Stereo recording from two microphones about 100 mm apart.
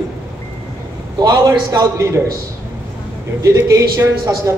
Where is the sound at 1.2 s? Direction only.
35° right (ahead or behind).